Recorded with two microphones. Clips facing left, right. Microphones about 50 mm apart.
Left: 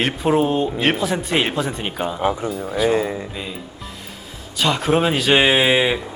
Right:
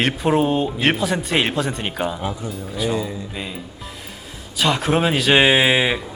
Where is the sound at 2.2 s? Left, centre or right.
Left.